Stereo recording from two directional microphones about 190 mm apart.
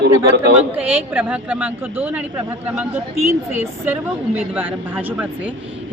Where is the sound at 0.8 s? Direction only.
10° right (ahead or behind).